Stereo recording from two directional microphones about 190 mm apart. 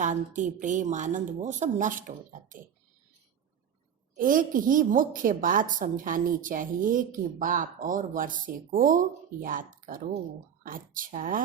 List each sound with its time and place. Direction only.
0.0 s a woman's voice: 40° right (ahead or behind)
4.2 s a woman's voice: 45° right (ahead or behind)